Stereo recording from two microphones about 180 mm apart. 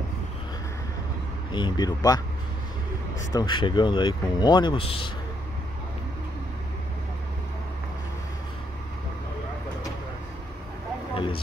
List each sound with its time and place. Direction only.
1.5 s speech: 25° left (ahead or behind)
3.3 s speech: 25° left (ahead or behind)
11.1 s vehicle: 30° left (ahead or behind)